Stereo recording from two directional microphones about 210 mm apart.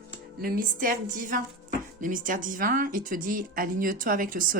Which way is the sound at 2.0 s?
40° right (ahead or behind).